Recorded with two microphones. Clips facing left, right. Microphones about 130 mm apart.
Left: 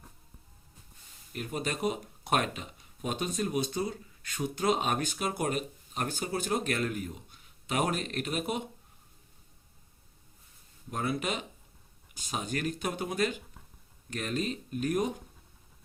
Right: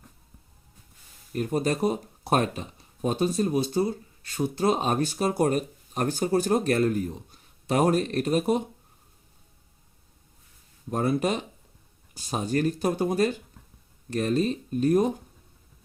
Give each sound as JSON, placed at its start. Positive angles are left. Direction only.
{"t": 1.3, "sound": "speech", "side_deg": -40}
{"t": 10.9, "sound": "speech", "side_deg": -40}